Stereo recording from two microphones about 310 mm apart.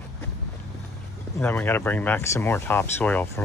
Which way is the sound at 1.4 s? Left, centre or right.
Centre.